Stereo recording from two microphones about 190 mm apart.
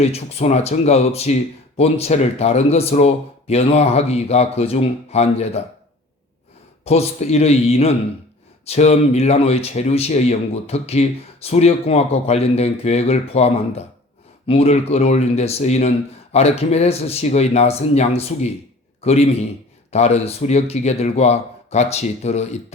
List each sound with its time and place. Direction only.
0.0 s speech: 35° left (ahead or behind)
6.8 s speech: 35° left (ahead or behind)